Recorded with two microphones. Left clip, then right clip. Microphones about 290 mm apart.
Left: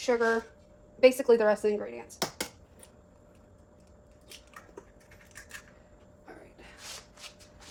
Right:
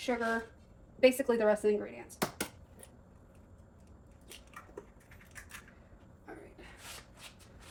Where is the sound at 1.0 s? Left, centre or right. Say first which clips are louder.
Left 5 dB; left.